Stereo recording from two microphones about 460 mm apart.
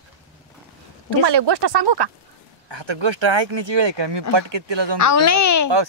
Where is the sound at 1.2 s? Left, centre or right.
Right.